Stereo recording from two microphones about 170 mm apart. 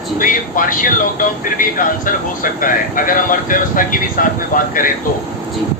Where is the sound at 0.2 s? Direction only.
55° left (ahead or behind).